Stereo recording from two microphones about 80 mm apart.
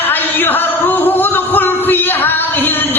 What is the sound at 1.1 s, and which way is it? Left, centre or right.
Music, left.